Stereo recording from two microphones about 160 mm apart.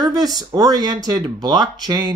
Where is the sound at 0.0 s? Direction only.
25° right (ahead or behind).